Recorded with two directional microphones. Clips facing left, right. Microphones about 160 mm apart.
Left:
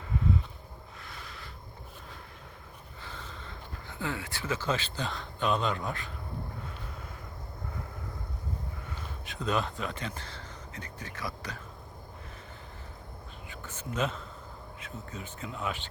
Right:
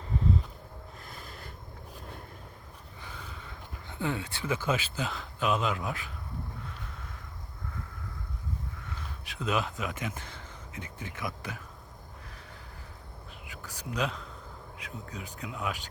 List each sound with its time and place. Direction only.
1.0 s a sound: 45° right (ahead or behind)
3.0 s speech: 10° right (ahead or behind)
9.2 s speech: centre (ahead or behind)
13.5 s speech: centre (ahead or behind)